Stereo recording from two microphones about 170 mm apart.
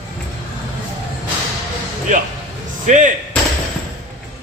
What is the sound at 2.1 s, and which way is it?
Speech, 45° right (ahead or behind).